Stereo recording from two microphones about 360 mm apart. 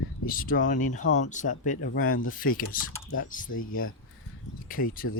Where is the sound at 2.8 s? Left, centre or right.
Left.